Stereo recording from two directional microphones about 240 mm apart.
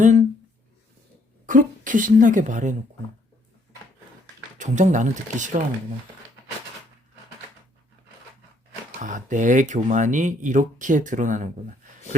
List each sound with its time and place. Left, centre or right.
0.0 s speech: right
1.5 s speech: right
4.5 s speech: right
9.0 s speech: right